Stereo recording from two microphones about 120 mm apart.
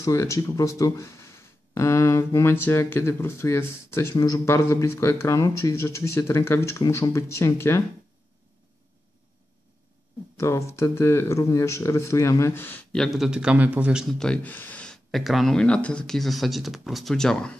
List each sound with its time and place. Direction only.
0.0 s speech: 25° left (ahead or behind)
10.3 s speech: 25° left (ahead or behind)
12.9 s a man's voice: centre (ahead or behind)
14.0 s speech: 5° left (ahead or behind)